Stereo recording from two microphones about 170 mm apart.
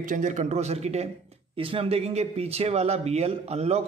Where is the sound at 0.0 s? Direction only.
50° right (ahead or behind).